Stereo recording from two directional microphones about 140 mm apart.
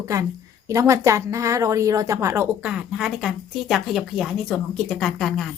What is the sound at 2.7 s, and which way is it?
A woman's voice, 5° right (ahead or behind).